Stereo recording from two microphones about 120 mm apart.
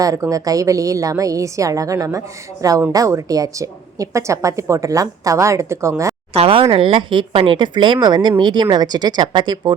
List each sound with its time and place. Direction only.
0.0 s a woman's voice: 30° right (ahead or behind)
6.3 s speech: 50° right (ahead or behind)